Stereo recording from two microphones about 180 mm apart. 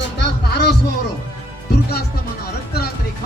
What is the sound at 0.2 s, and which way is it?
Music, 65° left (ahead or behind).